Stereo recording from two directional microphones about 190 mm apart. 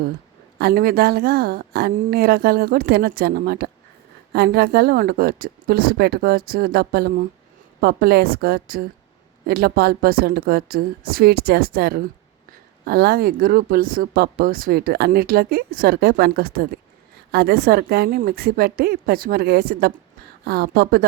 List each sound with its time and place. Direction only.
0.6 s a woman's voice: 55° right (ahead or behind)